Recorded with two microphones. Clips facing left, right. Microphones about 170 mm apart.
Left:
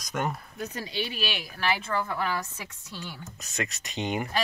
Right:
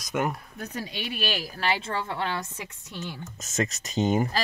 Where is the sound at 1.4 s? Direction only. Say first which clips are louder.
Right 1 dB; 30° right (ahead or behind).